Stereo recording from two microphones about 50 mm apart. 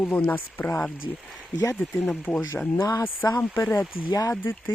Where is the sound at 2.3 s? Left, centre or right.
Left.